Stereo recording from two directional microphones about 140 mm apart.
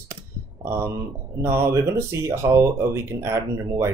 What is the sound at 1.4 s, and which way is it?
Speech, 20° right (ahead or behind).